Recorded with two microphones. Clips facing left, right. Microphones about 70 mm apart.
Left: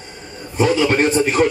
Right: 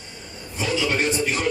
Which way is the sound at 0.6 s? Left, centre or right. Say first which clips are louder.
Left 8 dB; left.